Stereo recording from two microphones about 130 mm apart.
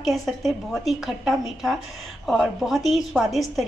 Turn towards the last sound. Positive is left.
turn(degrees=0)  # may be behind; listen again after turning